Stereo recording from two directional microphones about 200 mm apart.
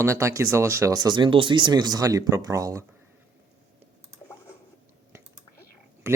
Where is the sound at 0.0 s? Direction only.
15° right (ahead or behind).